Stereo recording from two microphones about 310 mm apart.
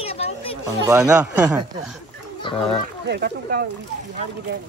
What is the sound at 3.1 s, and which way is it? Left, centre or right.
Speech, right.